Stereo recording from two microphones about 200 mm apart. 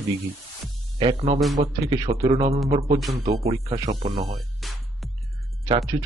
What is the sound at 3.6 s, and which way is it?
Speech, 20° right (ahead or behind).